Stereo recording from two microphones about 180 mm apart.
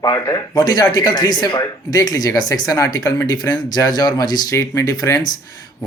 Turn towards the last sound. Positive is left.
turn(degrees=20)  # may be behind; listen again after turning